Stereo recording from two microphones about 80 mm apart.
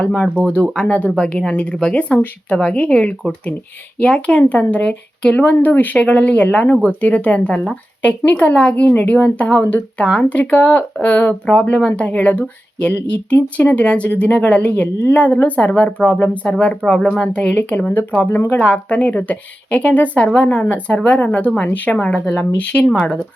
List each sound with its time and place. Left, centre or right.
0.0 s a woman's voice: centre
10.1 s a woman's voice: centre; by 18.6 s left
18.6 s a woman's voice: centre